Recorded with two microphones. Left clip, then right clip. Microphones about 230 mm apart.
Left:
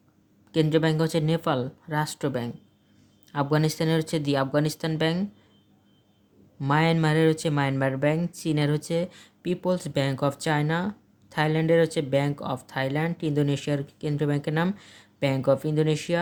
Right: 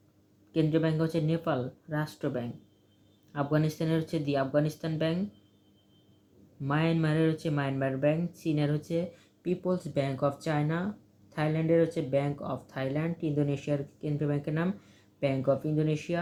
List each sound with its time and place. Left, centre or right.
0.5 s speech: left
6.6 s speech: left